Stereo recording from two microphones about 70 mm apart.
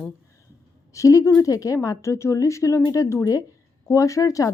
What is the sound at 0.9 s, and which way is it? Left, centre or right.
Speech, left.